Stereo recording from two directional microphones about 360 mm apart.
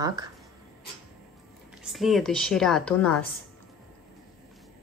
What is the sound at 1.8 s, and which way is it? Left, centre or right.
Speech, centre.